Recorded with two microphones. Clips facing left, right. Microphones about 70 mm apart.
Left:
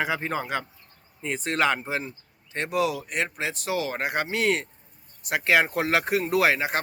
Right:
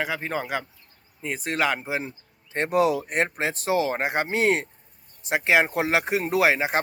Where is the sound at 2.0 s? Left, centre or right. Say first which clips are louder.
Right 1 dB; right.